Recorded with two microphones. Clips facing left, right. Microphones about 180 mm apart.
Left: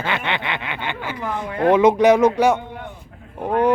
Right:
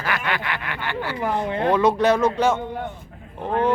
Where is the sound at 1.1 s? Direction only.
20° right (ahead or behind).